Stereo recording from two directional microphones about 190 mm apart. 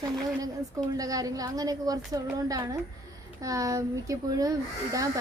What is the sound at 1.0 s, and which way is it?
Speech, 20° right (ahead or behind).